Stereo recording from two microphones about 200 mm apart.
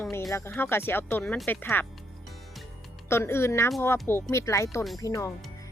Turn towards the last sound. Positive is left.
turn(degrees=15)  # may be behind; listen again after turning